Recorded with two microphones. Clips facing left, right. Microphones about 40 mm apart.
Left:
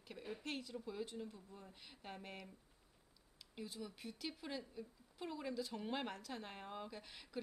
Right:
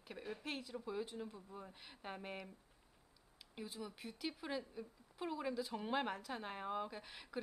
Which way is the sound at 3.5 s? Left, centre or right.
Centre.